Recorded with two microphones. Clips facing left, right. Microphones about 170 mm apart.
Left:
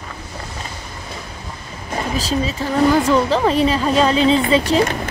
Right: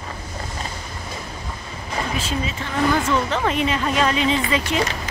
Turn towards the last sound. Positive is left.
turn(degrees=35)  # may be behind; listen again after turning